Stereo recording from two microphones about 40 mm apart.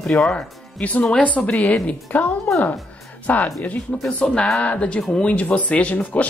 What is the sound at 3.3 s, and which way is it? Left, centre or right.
Speech, left.